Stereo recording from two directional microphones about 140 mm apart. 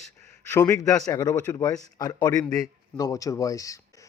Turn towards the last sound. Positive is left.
turn(degrees=25)  # may be behind; listen again after turning